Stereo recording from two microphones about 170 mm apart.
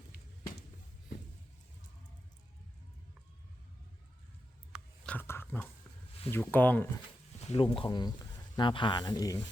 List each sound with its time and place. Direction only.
5.0 s dog: 10° left (ahead or behind)
6.3 s speech: 10° left (ahead or behind)
7.4 s speech: 30° left (ahead or behind)